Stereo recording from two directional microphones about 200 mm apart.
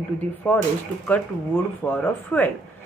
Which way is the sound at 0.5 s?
10° left (ahead or behind).